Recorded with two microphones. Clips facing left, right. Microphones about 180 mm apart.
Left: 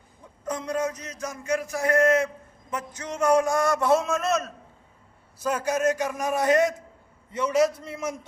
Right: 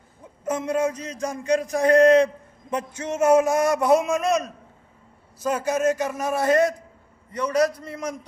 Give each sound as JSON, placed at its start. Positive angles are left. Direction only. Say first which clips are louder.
{"t": 0.4, "sound": "a man's voice", "louder": "right 4 dB", "side_deg": -25}